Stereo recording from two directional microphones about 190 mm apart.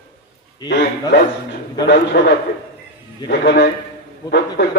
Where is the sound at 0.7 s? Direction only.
60° left (ahead or behind).